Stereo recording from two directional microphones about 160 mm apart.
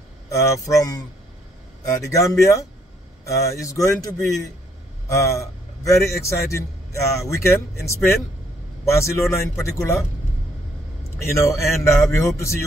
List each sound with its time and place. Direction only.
0.3 s a man's voice: 20° left (ahead or behind)
11.1 s a man's voice: 15° left (ahead or behind)